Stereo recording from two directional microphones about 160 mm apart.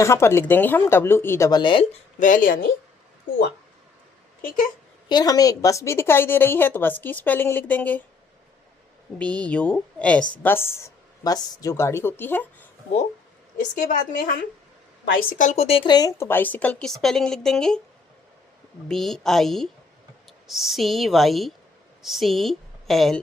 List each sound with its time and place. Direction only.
0.0 s a woman's voice: 15° left (ahead or behind)
2.1 s speech: 55° left (ahead or behind)
5.0 s a woman's voice: 25° left (ahead or behind); by 8.0 s 10° left (ahead or behind)
9.1 s a woman's voice: 5° left (ahead or behind)
13.7 s a woman's voice: 55° left (ahead or behind); by 17.7 s 5° left (ahead or behind)
18.9 s a woman's voice: centre (ahead or behind)